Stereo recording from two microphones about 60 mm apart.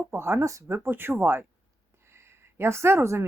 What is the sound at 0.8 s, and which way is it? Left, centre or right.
Speech, right.